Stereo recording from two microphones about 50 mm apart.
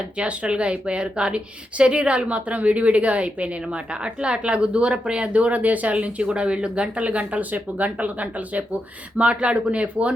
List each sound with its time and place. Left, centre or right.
0.2 s a woman's voice: right